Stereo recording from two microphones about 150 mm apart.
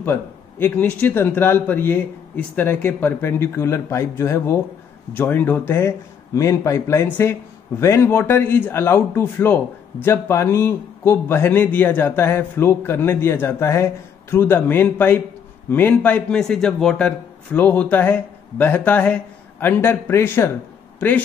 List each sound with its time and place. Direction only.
0.0 s speech: 15° left (ahead or behind)